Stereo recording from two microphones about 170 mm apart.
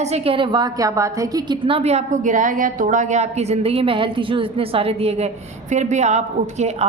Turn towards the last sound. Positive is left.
turn(degrees=-40)  # may be behind; listen again after turning